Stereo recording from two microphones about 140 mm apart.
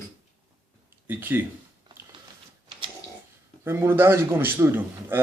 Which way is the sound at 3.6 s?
15° right (ahead or behind).